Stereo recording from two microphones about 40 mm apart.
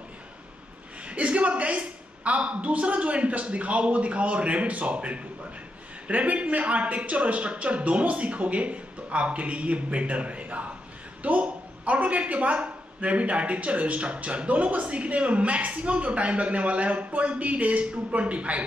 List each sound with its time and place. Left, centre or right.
1.0 s a woman's voice: right